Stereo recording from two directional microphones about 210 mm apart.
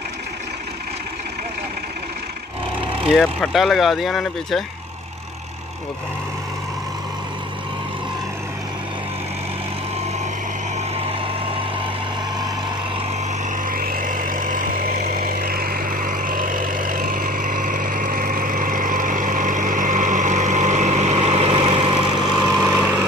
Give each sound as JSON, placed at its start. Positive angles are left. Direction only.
{"t": 3.1, "sound": "speech", "side_deg": 0}
{"t": 11.0, "sound": "vehicle", "side_deg": -25}
{"t": 13.7, "sound": "vehicle", "side_deg": -40}
{"t": 22.5, "sound": "vehicle", "side_deg": 0}